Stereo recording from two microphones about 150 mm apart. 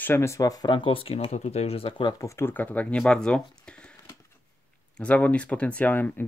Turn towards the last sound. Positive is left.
turn(degrees=10)  # may be behind; listen again after turning